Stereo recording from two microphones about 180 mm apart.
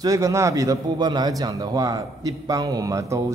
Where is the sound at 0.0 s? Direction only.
20° right (ahead or behind).